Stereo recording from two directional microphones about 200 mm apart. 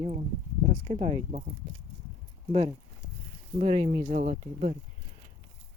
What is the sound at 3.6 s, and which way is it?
Speech, 30° right (ahead or behind).